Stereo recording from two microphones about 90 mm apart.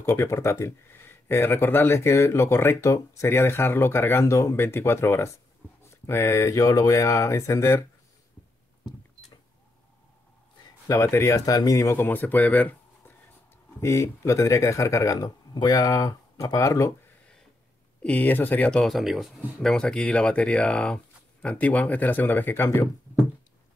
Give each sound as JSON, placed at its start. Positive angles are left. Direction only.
{"t": 0.0, "sound": "speech", "side_deg": 30}
{"t": 10.9, "sound": "speech", "side_deg": 30}
{"t": 12.0, "sound": "speech", "side_deg": 20}
{"t": 13.7, "sound": "speech", "side_deg": 30}
{"t": 18.0, "sound": "speech", "side_deg": 15}
{"t": 18.9, "sound": "speech", "side_deg": 0}
{"t": 19.6, "sound": "speech", "side_deg": 10}